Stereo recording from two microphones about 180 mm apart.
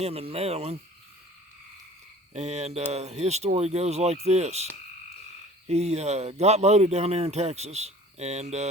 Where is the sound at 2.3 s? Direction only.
40° right (ahead or behind).